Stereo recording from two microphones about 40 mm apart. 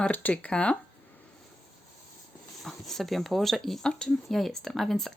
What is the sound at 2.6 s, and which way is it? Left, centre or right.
A woman's voice, centre.